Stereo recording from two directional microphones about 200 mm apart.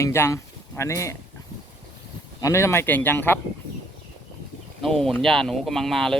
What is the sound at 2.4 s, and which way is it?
Speech, 15° left (ahead or behind).